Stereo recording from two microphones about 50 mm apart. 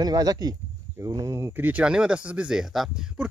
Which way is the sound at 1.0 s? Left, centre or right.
Right.